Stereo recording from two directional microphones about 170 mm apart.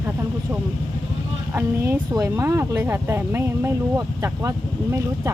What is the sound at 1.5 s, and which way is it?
Speech, 15° right (ahead or behind).